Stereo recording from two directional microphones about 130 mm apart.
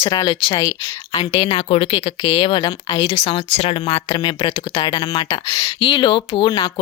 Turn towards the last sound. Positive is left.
turn(degrees=40)  # may be behind; listen again after turning